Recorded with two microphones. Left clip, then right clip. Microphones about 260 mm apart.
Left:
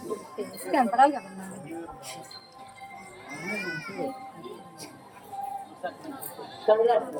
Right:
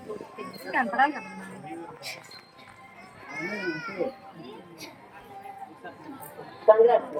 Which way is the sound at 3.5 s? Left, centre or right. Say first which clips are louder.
Left 1 dB; centre.